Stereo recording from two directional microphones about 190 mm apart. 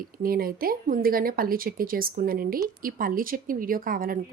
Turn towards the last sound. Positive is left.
turn(degrees=-50)  # may be behind; listen again after turning